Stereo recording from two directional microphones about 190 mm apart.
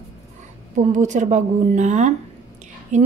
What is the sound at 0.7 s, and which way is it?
Speech, 40° right (ahead or behind).